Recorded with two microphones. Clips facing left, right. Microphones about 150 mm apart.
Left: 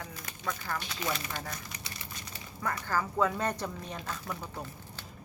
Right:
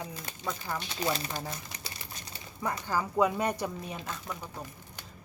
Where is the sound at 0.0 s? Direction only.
20° right (ahead or behind).